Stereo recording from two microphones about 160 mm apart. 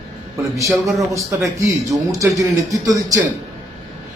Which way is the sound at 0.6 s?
Centre (ahead or behind).